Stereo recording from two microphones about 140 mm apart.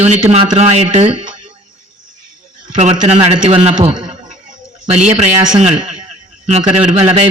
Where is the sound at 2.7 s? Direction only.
50° right (ahead or behind).